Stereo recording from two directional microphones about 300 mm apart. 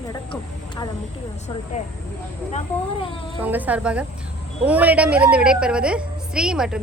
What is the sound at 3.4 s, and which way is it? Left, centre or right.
A woman's voice, centre.